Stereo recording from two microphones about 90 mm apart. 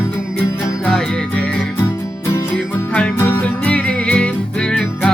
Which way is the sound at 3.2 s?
30° left (ahead or behind).